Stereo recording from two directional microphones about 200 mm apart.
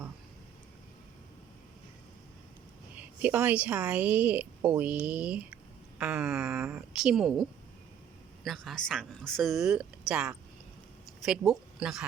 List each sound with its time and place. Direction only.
3.0 s speech: 10° right (ahead or behind)
8.4 s speech: centre (ahead or behind)